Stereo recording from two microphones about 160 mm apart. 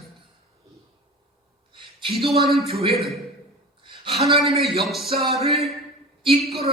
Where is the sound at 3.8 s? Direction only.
30° right (ahead or behind).